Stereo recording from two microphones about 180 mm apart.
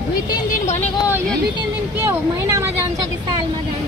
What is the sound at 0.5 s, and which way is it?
Speech, 40° left (ahead or behind).